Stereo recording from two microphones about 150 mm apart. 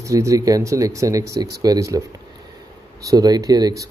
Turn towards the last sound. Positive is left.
turn(degrees=-25)  # may be behind; listen again after turning